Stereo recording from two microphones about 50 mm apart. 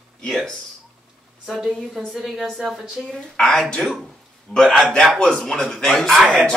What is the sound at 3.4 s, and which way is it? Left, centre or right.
Speech, centre.